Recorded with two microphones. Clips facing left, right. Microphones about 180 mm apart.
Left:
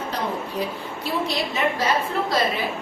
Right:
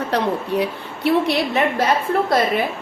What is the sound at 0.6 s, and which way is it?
A woman's voice, 65° right (ahead or behind).